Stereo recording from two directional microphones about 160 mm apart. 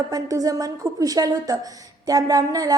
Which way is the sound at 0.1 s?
20° right (ahead or behind).